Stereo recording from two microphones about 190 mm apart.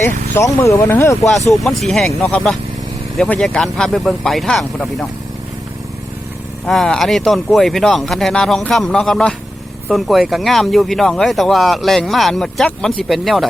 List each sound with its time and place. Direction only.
0.3 s speech: 15° left (ahead or behind)
1.5 s speech: centre (ahead or behind)
6.7 s speech: centre (ahead or behind)